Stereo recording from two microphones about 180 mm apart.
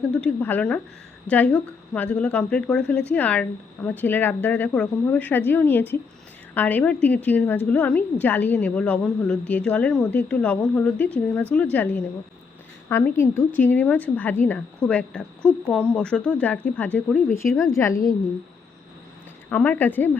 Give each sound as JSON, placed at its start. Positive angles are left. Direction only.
{"t": 0.1, "sound": "a woman's voice", "side_deg": 5}
{"t": 19.5, "sound": "a woman's voice", "side_deg": 10}